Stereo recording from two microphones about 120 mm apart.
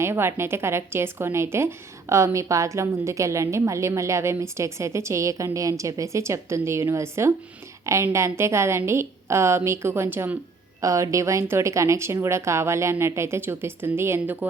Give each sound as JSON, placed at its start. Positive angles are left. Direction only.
{"t": 0.0, "sound": "a woman's voice", "side_deg": -20}